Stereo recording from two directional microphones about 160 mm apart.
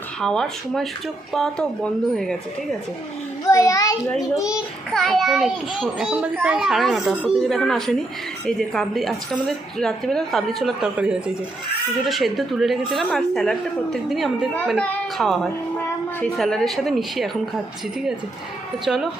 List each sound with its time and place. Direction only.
0.2 s a woman's voice: 5° left (ahead or behind)
3.4 s a child's voice: 20° left (ahead or behind)
4.9 s a woman's voice: centre (ahead or behind)
18.9 s a woman's voice: 5° right (ahead or behind)